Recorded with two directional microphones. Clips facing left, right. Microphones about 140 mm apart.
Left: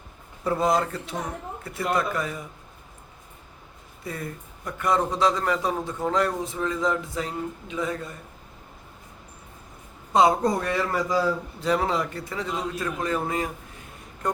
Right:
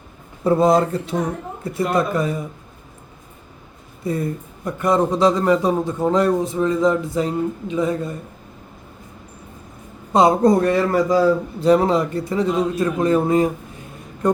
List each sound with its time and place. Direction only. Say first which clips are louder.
0.4 s speech: right 8 dB; 30° right (ahead or behind)
4.0 s speech: right 11 dB; 30° right (ahead or behind)
10.1 s speech: right 6 dB; 40° right (ahead or behind)